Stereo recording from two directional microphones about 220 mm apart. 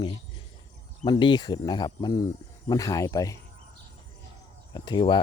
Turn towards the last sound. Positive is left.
turn(degrees=20)  # may be behind; listen again after turning